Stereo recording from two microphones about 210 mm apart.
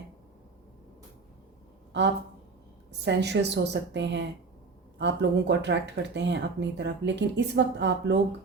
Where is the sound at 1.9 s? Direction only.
55° right (ahead or behind).